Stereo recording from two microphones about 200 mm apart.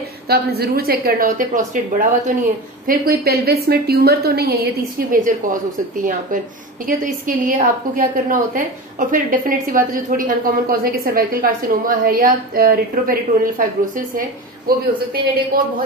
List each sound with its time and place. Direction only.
0.3 s a woman's voice: 50° right (ahead or behind)
2.9 s a woman's voice: 50° right (ahead or behind)